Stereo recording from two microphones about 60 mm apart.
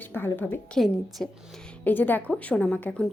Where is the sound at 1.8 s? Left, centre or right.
Left.